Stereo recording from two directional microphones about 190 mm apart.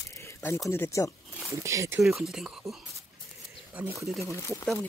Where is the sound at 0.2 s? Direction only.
15° left (ahead or behind).